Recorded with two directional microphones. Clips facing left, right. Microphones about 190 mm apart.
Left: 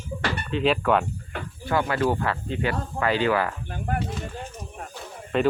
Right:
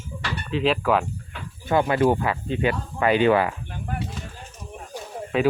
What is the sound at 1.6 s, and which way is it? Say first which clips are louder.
Speech: right 4 dB; 20° right (ahead or behind).